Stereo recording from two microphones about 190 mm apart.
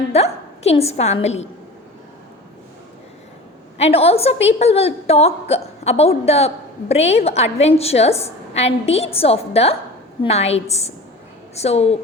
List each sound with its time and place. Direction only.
0.1 s a woman's voice: 35° left (ahead or behind)
3.8 s a woman's voice: 30° left (ahead or behind)